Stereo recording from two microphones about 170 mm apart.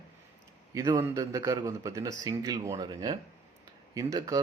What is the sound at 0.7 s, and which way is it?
Speech, 20° right (ahead or behind).